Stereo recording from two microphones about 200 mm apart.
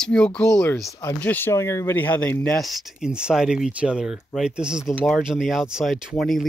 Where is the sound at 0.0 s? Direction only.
5° left (ahead or behind).